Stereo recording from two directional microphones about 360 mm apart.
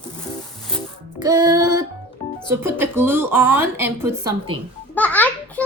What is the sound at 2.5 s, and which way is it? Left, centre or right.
Speech, centre.